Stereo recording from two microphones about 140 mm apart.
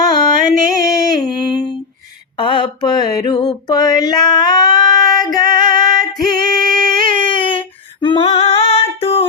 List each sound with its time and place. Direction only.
0.0 s music: 30° left (ahead or behind)
2.4 s mantra: 35° left (ahead or behind)
8.0 s female singing: 35° left (ahead or behind)
8.3 s singing: 50° left (ahead or behind)